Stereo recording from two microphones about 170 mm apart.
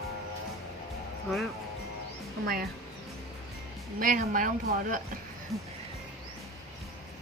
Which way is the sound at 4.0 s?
55° right (ahead or behind).